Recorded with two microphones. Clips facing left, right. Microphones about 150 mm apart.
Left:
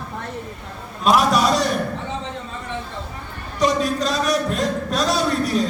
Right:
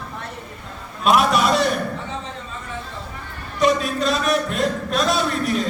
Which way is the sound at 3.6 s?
40° left (ahead or behind).